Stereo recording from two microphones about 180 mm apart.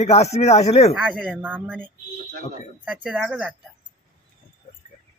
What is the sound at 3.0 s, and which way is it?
Speech, 5° right (ahead or behind).